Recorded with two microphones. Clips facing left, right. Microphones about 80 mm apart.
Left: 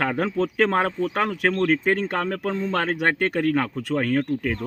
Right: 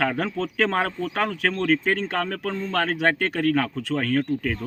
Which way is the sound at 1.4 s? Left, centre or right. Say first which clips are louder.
Left 2 dB; centre.